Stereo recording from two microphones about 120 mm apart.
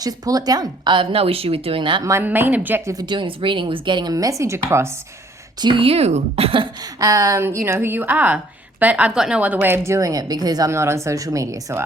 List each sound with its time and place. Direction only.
0.0 s speech: 30° right (ahead or behind)
2.0 s a woman's voice: 20° right (ahead or behind)
2.9 s speech: 40° right (ahead or behind)
5.5 s speech: 40° right (ahead or behind)
6.8 s a woman's voice: 30° right (ahead or behind)
10.7 s a woman's voice: 25° right (ahead or behind)